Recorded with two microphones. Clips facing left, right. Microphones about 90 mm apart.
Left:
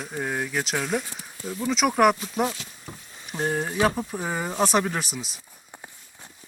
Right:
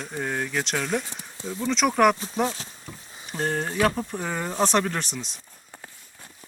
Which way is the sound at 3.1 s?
Centre (ahead or behind).